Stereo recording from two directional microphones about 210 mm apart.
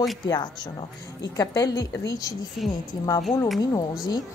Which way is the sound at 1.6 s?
15° left (ahead or behind).